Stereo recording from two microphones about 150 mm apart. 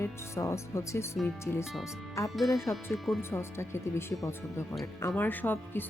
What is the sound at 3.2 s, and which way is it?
Speech, 15° left (ahead or behind).